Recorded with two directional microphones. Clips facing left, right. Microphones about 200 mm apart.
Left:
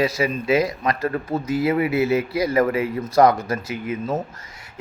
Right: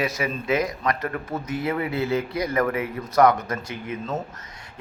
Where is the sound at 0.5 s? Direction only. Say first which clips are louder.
Left 3 dB; 10° left (ahead or behind).